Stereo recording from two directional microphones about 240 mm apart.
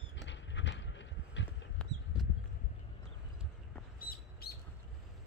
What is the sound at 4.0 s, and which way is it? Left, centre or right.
Squawk, left.